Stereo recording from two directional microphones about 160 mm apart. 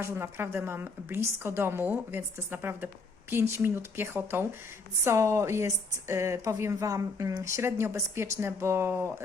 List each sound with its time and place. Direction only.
0.0 s a woman's voice: 15° right (ahead or behind)